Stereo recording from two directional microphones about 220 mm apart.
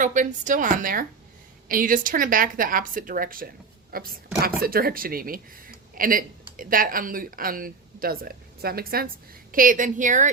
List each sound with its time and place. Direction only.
0.0 s a woman's voice: 35° right (ahead or behind)